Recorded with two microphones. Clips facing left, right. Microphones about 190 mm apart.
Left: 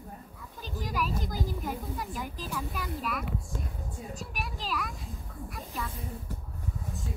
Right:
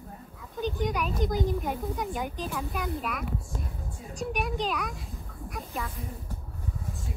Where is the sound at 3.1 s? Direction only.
Centre (ahead or behind).